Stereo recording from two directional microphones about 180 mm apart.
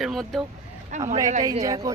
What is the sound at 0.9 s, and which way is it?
Speech, 40° right (ahead or behind).